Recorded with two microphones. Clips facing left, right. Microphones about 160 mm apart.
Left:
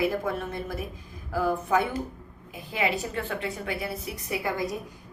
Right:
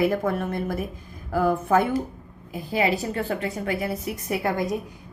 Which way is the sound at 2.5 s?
35° right (ahead or behind).